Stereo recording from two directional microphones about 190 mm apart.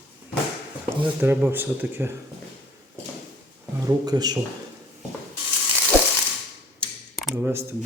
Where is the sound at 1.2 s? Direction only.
10° right (ahead or behind).